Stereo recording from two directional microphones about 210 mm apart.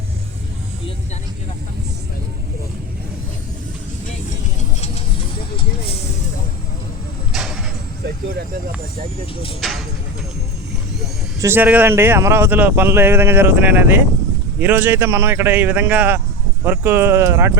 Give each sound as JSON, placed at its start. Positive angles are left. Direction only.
{"t": 5.5, "sound": "vehicle", "side_deg": 25}
{"t": 7.3, "sound": "a sound", "side_deg": 0}
{"t": 9.6, "sound": "speech", "side_deg": 0}
{"t": 11.3, "sound": "speech", "side_deg": -10}